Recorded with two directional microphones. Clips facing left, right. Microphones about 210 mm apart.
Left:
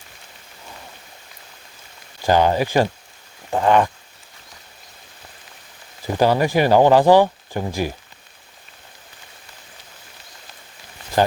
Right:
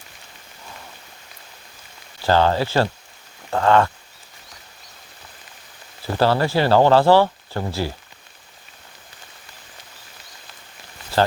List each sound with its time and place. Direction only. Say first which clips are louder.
2.2 s speech: left 1 dB; 15° left (ahead or behind)
6.1 s speech: left 2 dB; 15° left (ahead or behind)